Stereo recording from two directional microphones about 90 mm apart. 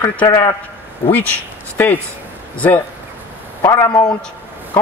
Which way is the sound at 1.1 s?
15° left (ahead or behind).